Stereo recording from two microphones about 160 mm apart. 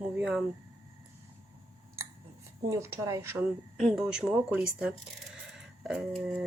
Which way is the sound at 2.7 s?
20° right (ahead or behind).